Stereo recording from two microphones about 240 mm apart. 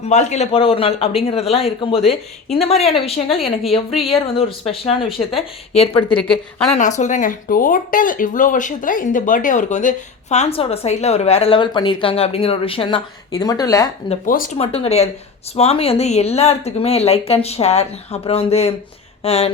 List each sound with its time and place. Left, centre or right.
0.0 s speech: left
5.9 s speech: centre
6.7 s speech: left; by 13.9 s centre
14.1 s speech: left